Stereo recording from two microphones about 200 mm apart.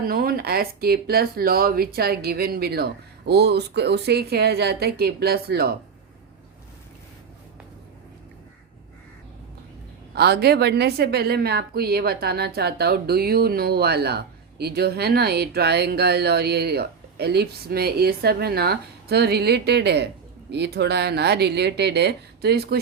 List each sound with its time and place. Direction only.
0.0 s a woman's voice: 50° right (ahead or behind)
10.2 s a woman's voice: 55° right (ahead or behind)